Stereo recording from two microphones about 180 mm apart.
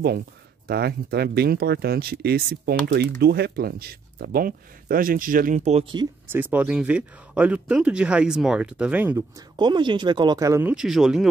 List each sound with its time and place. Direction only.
0.7 s speech: 65° right (ahead or behind); by 5.9 s 35° right (ahead or behind)
6.2 s speech: 10° right (ahead or behind)
9.6 s speech: 25° right (ahead or behind)
10.7 s speech: 5° right (ahead or behind)